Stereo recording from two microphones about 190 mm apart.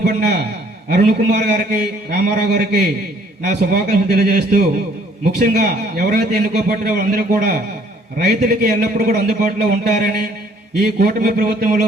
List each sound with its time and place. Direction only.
0.0 s a man's voice: 55° right (ahead or behind)